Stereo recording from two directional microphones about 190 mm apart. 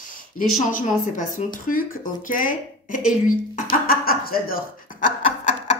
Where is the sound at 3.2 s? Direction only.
50° left (ahead or behind).